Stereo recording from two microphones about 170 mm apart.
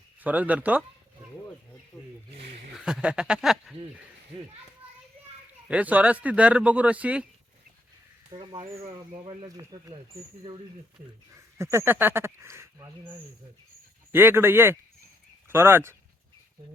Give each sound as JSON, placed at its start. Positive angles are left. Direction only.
{"t": 0.2, "sound": "speech", "side_deg": -10}
{"t": 1.9, "sound": "speech", "side_deg": 5}
{"t": 5.6, "sound": "speech", "side_deg": -10}
{"t": 8.3, "sound": "speech", "side_deg": -25}
{"t": 11.3, "sound": "speech", "side_deg": -15}